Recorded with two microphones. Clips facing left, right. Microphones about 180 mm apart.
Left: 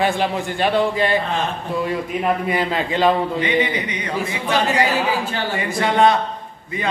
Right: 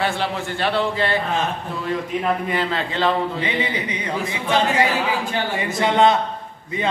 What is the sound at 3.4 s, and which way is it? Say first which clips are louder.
Speech: left 4 dB; 30° right (ahead or behind).